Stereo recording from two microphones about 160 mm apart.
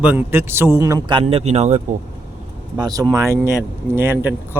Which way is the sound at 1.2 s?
40° right (ahead or behind).